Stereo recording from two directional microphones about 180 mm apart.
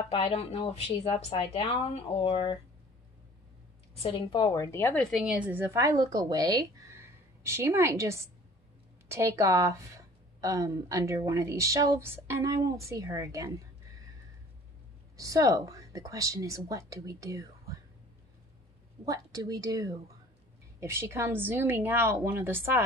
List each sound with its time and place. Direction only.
0.1 s a woman's voice: 30° left (ahead or behind)
4.0 s a woman's voice: 25° left (ahead or behind); by 13.5 s 20° right (ahead or behind)
15.1 s a woman's voice: 20° right (ahead or behind)
19.0 s a woman's voice: 20° right (ahead or behind)